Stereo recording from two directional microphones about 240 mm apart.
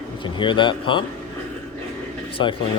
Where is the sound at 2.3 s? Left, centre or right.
Left.